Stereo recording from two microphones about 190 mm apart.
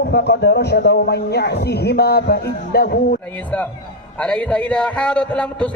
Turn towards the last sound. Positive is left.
turn(degrees=5)  # may be behind; listen again after turning